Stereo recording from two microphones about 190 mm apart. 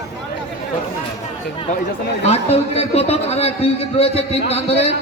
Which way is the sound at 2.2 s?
35° left (ahead or behind).